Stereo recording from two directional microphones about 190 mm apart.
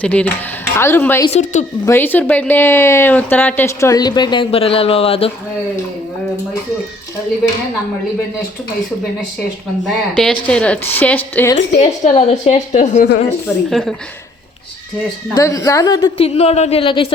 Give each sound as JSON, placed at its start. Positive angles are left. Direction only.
{"t": 0.0, "sound": "speech", "side_deg": 5}
{"t": 1.3, "sound": "a woman's voice", "side_deg": 40}
{"t": 1.8, "sound": "speech", "side_deg": 10}
{"t": 9.8, "sound": "speech", "side_deg": 0}
{"t": 11.8, "sound": "a woman's voice", "side_deg": 35}
{"t": 13.7, "sound": "a woman's voice", "side_deg": 0}
{"t": 15.4, "sound": "a woman's voice", "side_deg": 15}